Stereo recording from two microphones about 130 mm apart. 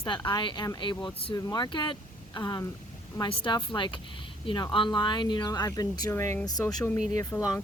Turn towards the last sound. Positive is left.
turn(degrees=10)  # may be behind; listen again after turning